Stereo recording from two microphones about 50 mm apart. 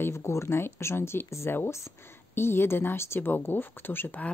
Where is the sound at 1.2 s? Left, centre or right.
Left.